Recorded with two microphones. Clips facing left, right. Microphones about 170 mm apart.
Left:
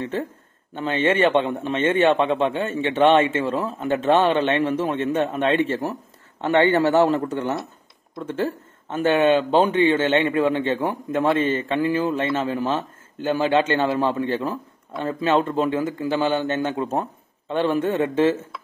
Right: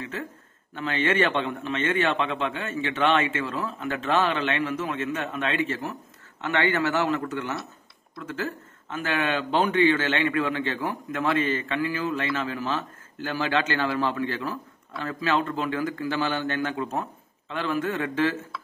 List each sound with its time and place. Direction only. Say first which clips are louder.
0.7 s a man's voice: left 4 dB; 25° left (ahead or behind)